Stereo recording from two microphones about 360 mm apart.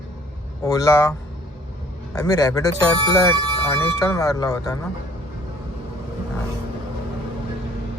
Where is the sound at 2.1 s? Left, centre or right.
Centre.